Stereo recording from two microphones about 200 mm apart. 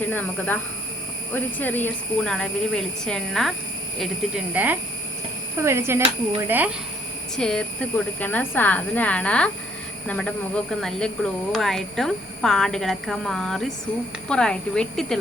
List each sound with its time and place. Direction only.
0.1 s a woman's voice: 10° left (ahead or behind); by 6.7 s 10° right (ahead or behind)
7.3 s a woman's voice: 5° left (ahead or behind)